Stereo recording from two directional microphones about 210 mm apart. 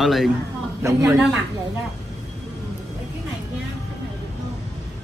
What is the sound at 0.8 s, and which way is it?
Speech, 15° right (ahead or behind).